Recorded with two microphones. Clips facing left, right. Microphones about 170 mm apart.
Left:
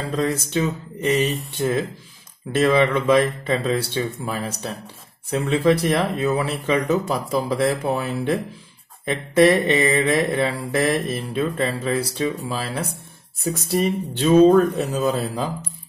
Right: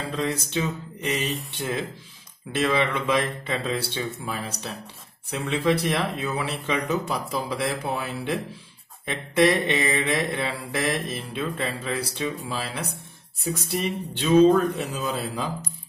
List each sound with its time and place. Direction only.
0.1 s speech: 45° left (ahead or behind)
2.5 s speech: 45° left (ahead or behind)